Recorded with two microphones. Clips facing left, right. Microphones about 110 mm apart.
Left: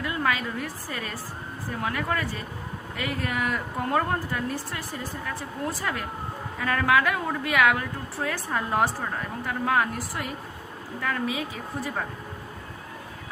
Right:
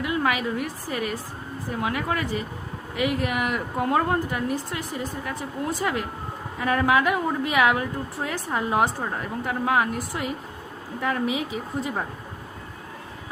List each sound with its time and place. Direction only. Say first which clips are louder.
0.0 s a woman's voice: right 3 dB; 15° right (ahead or behind)